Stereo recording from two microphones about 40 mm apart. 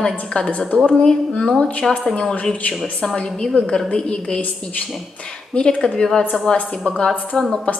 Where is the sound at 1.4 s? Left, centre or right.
Centre.